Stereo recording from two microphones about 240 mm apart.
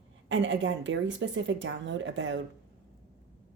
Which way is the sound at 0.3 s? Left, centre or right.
Right.